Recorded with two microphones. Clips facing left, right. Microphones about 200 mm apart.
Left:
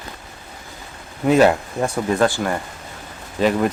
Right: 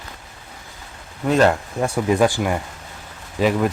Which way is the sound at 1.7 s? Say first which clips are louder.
Right 1 dB; 10° right (ahead or behind).